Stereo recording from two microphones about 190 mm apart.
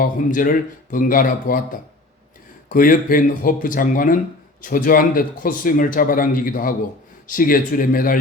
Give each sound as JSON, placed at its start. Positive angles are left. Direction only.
{"t": 0.0, "sound": "speech", "side_deg": 45}